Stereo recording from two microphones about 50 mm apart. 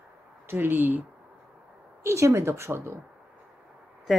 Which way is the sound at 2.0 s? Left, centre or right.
Right.